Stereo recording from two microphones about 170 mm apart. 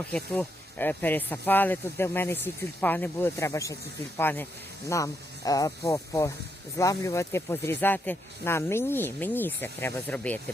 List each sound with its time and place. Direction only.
0.1 s speech: 10° left (ahead or behind)